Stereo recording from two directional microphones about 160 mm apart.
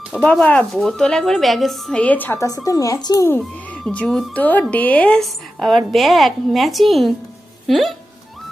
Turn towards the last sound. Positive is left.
turn(degrees=0)  # may be behind; listen again after turning